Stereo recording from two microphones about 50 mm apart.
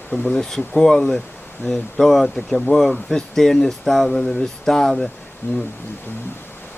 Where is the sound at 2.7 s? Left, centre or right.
Centre.